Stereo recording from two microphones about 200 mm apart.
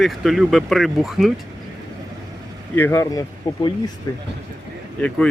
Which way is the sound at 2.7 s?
10° left (ahead or behind).